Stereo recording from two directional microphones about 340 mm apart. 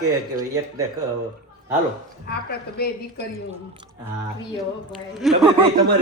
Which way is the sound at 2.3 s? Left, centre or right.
Left.